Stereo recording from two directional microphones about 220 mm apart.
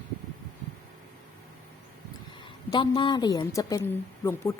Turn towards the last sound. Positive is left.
turn(degrees=10)  # may be behind; listen again after turning